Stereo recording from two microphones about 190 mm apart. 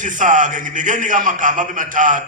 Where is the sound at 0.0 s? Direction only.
40° right (ahead or behind).